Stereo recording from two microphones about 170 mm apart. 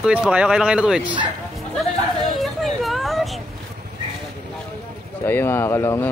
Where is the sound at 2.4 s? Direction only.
Centre (ahead or behind).